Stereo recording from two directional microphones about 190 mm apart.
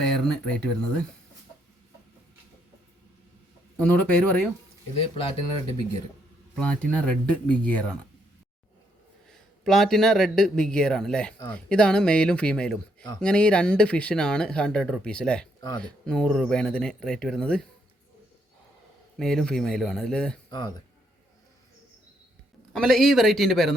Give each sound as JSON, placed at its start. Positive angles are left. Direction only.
{"t": 0.0, "sound": "speech", "side_deg": 5}
{"t": 3.8, "sound": "speech", "side_deg": 5}
{"t": 6.6, "sound": "speech", "side_deg": 5}
{"t": 9.3, "sound": "speech", "side_deg": 0}
{"t": 19.2, "sound": "speech", "side_deg": 5}
{"t": 20.5, "sound": "speech", "side_deg": 25}
{"t": 22.7, "sound": "speech", "side_deg": 0}